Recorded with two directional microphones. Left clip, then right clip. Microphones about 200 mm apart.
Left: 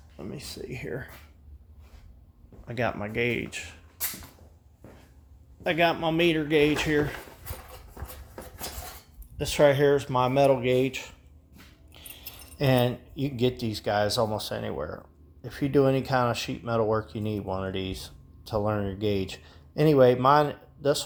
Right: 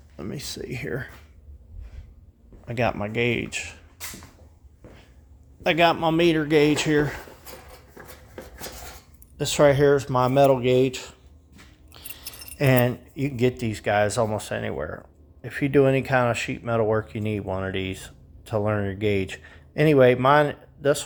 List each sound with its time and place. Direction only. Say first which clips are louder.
0.2 s speech: right 5 dB; 35° right (ahead or behind)
2.6 s speech: right 4 dB; 20° right (ahead or behind)
5.6 s speech: right 5 dB; 30° right (ahead or behind)
7.9 s a sound: right 3 dB; 5° right (ahead or behind)
9.4 s speech: right 3 dB; 25° right (ahead or behind)
11.9 s a sound: right 4 dB; 25° right (ahead or behind)
12.5 s speech: right 3 dB; 20° right (ahead or behind)